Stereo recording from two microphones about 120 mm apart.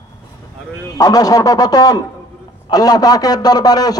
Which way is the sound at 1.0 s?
30° left (ahead or behind).